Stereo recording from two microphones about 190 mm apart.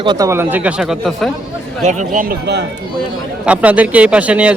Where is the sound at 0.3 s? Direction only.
10° right (ahead or behind).